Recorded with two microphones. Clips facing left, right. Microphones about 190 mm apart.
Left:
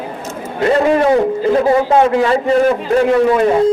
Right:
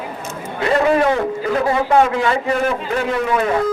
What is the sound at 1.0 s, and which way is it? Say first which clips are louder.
A man's voice: left 6 dB; 30° left (ahead or behind).